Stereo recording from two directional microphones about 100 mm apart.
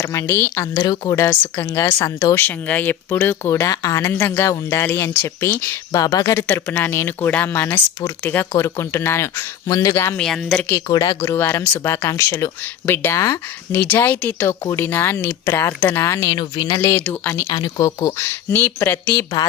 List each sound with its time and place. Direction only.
0.0 s a woman's voice: 30° left (ahead or behind)
1.1 s a woman's voice: 25° left (ahead or behind)
2.4 s speech: 15° left (ahead or behind)
5.9 s a woman's voice: 35° left (ahead or behind)
6.5 s speech: 20° left (ahead or behind)
8.5 s speech: 30° left (ahead or behind)
9.6 s a woman's voice: 35° left (ahead or behind)
10.2 s speech: 5° left (ahead or behind)
10.8 s a woman's voice: 40° left (ahead or behind)
11.2 s speech: 25° left (ahead or behind)
13.8 s speech: 15° left (ahead or behind)
16.3 s a woman's voice: 50° left (ahead or behind); by 18.3 s 35° left (ahead or behind)
18.3 s speech: 20° left (ahead or behind)